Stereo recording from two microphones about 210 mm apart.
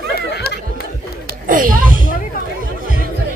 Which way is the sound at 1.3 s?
40° right (ahead or behind).